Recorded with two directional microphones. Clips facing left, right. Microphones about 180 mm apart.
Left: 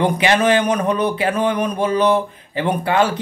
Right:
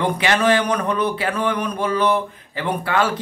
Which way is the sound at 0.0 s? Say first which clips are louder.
Left 3 dB; 20° left (ahead or behind).